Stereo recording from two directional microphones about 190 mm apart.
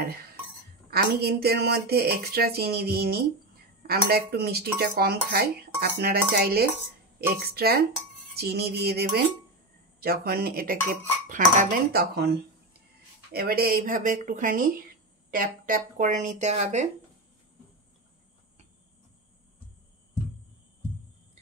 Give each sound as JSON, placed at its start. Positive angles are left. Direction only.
{"t": 0.0, "sound": "a sound", "side_deg": -55}
{"t": 0.8, "sound": "speech", "side_deg": -55}
{"t": 9.9, "sound": "dishes", "side_deg": -55}
{"t": 13.3, "sound": "dishes", "side_deg": -55}
{"t": 15.3, "sound": "speech", "side_deg": -45}